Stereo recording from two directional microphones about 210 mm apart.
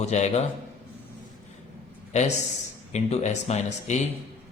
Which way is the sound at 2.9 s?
30° left (ahead or behind).